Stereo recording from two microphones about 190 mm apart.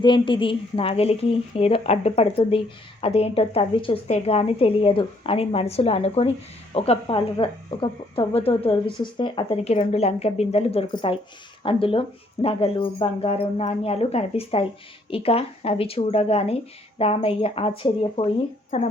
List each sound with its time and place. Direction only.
0.0 s speech: 25° left (ahead or behind)